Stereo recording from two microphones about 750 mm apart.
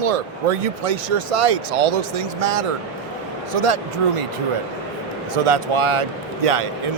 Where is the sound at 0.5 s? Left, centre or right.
Right.